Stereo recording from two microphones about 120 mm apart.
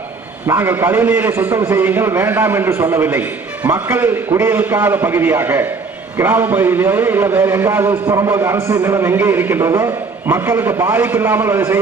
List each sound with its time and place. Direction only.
0.4 s a man's voice: 20° right (ahead or behind)
8.0 s a man's voice: 35° right (ahead or behind)
8.3 s a man's voice: 20° right (ahead or behind)